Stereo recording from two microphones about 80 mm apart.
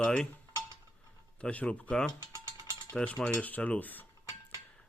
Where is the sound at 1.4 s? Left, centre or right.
Centre.